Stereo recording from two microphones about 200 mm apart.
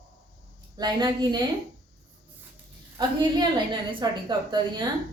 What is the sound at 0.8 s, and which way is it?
Speech, 20° right (ahead or behind).